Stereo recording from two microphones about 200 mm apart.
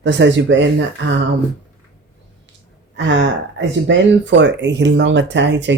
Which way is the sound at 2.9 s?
65° right (ahead or behind).